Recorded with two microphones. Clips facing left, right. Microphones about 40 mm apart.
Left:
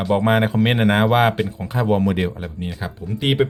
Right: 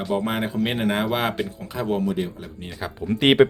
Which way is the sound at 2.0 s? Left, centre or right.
Left.